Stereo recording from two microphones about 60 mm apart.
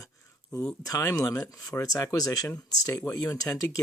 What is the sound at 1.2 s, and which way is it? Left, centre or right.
Speech, left.